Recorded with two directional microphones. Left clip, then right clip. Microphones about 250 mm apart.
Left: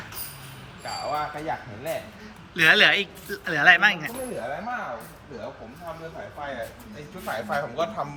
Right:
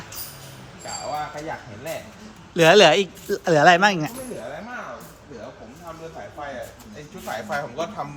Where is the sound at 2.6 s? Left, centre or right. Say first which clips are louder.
Right 4 dB; centre.